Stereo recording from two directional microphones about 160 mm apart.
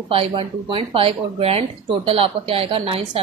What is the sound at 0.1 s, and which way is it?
A woman's voice, 35° right (ahead or behind).